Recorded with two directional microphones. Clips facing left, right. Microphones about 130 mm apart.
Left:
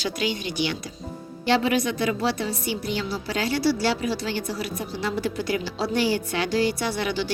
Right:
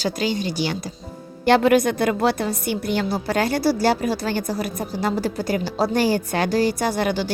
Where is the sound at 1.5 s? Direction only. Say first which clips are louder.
Right 6 dB; 55° right (ahead or behind).